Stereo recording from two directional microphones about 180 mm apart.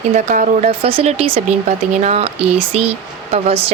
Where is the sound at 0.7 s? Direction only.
30° right (ahead or behind).